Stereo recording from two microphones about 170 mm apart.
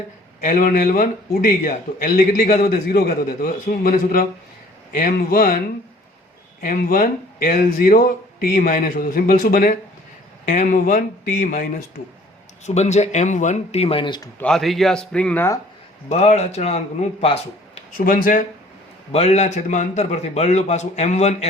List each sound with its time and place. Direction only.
0.4 s a man's voice: 50° left (ahead or behind)
6.6 s a man's voice: 55° left (ahead or behind)
12.6 s a man's voice: 40° left (ahead or behind)
14.3 s speech: 5° left (ahead or behind)
16.0 s a man's voice: 40° left (ahead or behind)
17.9 s speech: 55° left (ahead or behind)
19.1 s a man's voice: 40° left (ahead or behind)